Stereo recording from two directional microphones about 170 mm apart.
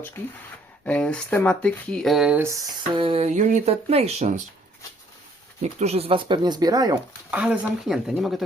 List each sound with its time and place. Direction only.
0.9 s speech: 5° left (ahead or behind); by 2.6 s 10° right (ahead or behind)
2.9 s speech: 30° right (ahead or behind)
5.6 s speech: 35° right (ahead or behind)
7.3 s speech: 10° right (ahead or behind)